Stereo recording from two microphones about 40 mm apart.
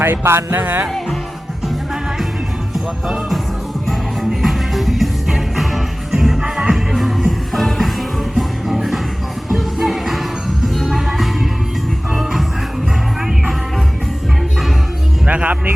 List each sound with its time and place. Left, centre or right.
0.0 s music: right
2.7 s music: centre
15.3 s a man's voice: right